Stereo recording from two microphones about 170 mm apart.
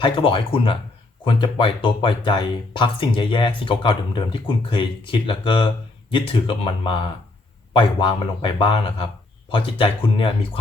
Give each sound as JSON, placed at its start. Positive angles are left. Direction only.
{"t": 0.0, "sound": "speech", "side_deg": 30}